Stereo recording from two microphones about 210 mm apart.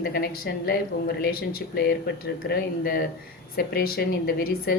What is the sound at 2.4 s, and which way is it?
A woman's voice, 50° left (ahead or behind).